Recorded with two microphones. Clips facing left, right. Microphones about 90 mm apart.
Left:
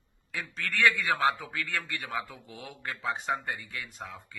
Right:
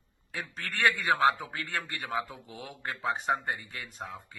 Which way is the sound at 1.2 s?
25° right (ahead or behind).